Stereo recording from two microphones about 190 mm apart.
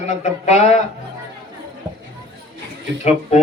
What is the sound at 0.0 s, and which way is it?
Speech, 35° left (ahead or behind).